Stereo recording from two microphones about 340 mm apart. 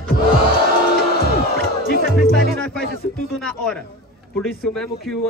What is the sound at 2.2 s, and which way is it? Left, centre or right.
Speech, left.